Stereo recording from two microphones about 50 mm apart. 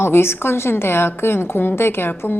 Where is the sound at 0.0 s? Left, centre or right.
Left.